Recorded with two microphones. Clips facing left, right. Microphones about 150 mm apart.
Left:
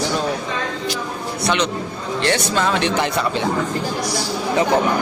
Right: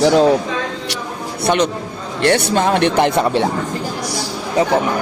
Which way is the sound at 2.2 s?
55° right (ahead or behind).